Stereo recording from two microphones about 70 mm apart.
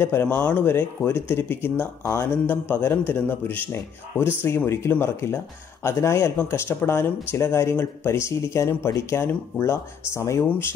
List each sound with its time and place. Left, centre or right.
0.0 s speech: left
0.4 s a man's voice: centre
0.7 s a man's voice: left